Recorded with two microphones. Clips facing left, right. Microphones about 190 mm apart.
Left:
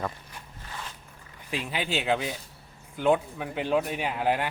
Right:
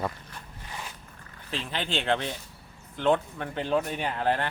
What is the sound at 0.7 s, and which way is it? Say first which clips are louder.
Zipper: even; 15° right (ahead or behind).